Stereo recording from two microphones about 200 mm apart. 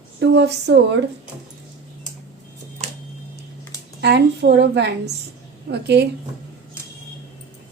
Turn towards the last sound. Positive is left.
turn(degrees=-55)  # may be behind; listen again after turning